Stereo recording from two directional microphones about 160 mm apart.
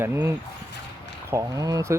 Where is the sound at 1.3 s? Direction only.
20° right (ahead or behind).